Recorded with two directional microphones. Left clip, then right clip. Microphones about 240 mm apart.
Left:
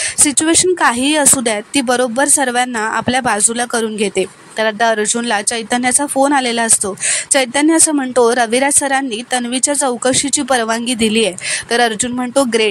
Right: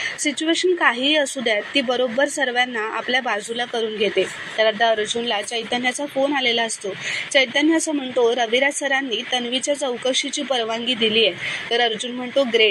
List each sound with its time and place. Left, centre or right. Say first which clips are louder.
0.4 s speech: left 5 dB; left